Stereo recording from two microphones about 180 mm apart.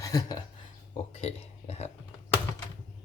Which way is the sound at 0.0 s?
20° left (ahead or behind).